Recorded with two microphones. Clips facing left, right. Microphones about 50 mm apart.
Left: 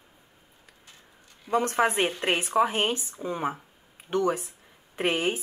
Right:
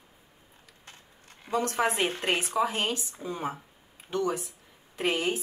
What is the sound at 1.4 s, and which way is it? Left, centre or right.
A woman's voice, left.